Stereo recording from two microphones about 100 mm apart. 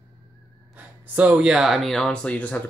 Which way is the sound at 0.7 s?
15° right (ahead or behind).